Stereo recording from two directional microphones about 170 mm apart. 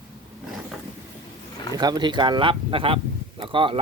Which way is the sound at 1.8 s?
25° right (ahead or behind).